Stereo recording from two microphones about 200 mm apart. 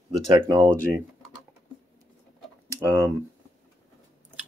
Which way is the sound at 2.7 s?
15° right (ahead or behind).